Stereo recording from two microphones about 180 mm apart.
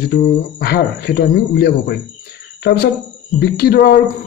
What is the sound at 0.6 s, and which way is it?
Speech, 60° left (ahead or behind).